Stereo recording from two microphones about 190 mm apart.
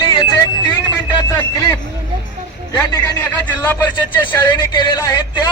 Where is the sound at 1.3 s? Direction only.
15° left (ahead or behind).